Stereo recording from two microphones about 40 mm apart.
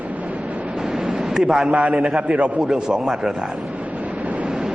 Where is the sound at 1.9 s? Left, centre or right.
Centre.